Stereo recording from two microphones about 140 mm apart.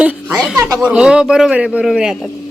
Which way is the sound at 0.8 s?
5° right (ahead or behind).